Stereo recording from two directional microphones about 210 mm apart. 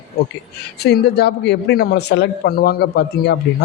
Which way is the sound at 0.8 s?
50° left (ahead or behind).